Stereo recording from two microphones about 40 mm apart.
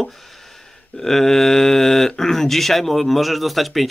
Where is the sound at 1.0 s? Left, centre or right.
Centre.